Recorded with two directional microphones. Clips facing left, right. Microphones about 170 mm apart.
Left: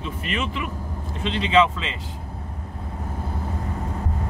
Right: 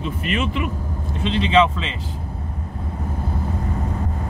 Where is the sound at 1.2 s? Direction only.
30° right (ahead or behind).